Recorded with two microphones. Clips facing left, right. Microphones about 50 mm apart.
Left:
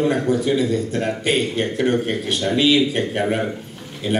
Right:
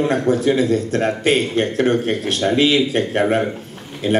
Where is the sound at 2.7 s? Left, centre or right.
Right.